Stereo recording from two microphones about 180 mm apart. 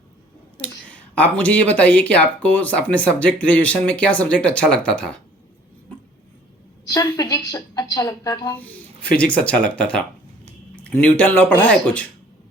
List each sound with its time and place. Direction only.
0.6 s speech: 5° left (ahead or behind)
6.8 s a woman's voice: 20° left (ahead or behind)
8.5 s speech: 10° left (ahead or behind)